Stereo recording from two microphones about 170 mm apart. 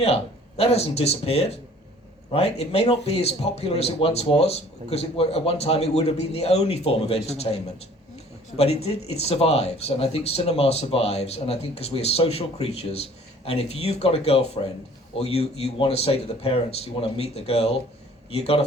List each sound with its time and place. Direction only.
0.0 s speech: 35° left (ahead or behind)